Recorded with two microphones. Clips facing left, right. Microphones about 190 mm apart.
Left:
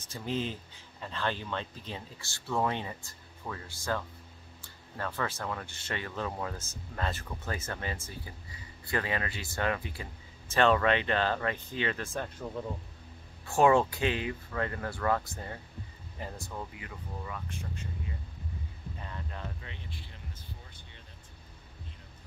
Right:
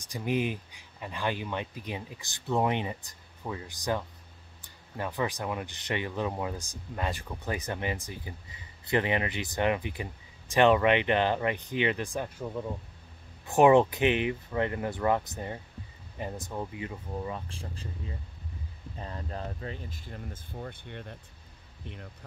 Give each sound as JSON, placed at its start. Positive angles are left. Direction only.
{"t": 0.0, "sound": "speech", "side_deg": -15}
{"t": 13.5, "sound": "speech", "side_deg": -20}